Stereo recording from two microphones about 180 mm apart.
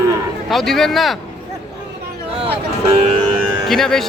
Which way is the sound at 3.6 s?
Centre (ahead or behind).